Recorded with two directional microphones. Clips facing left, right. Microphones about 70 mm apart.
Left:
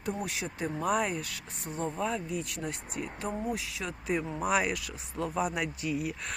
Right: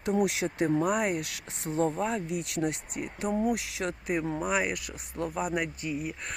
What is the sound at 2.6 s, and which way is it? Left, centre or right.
Speech, right.